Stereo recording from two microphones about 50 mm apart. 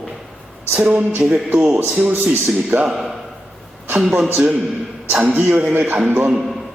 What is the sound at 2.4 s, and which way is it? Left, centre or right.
Speech, right.